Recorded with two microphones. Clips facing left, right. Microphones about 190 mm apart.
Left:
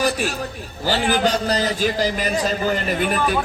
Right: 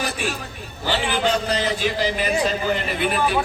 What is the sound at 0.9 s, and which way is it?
A man's voice, 40° left (ahead or behind).